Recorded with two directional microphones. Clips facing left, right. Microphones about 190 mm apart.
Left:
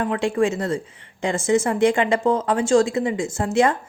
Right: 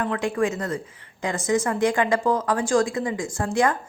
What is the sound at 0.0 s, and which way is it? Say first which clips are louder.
Speech: left 3 dB; 25° left (ahead or behind).